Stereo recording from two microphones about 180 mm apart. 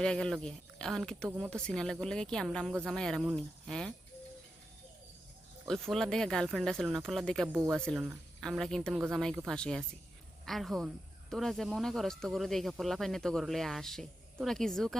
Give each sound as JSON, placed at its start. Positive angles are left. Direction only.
{"t": 0.0, "sound": "speech", "side_deg": 5}
{"t": 5.6, "sound": "speech", "side_deg": 0}
{"t": 7.4, "sound": "speech", "side_deg": -20}
{"t": 7.7, "sound": "speech", "side_deg": 5}